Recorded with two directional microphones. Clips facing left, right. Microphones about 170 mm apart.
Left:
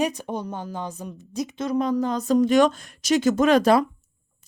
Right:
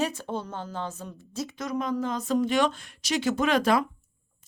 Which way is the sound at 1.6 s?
35° left (ahead or behind).